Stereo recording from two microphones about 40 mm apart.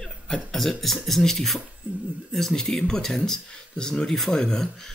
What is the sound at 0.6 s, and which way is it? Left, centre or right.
Speech, centre.